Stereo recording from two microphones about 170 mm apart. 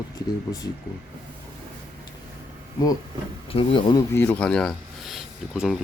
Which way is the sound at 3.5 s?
30° left (ahead or behind).